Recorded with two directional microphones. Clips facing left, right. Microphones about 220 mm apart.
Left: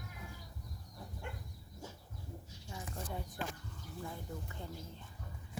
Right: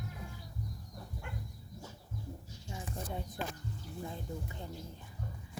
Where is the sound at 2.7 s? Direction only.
20° right (ahead or behind).